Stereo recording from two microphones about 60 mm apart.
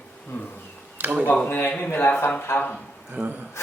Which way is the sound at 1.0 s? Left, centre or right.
Right.